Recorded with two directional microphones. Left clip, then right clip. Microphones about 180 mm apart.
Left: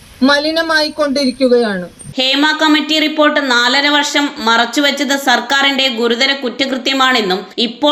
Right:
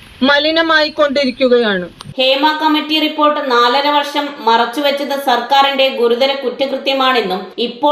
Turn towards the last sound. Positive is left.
turn(degrees=50)  # may be behind; listen again after turning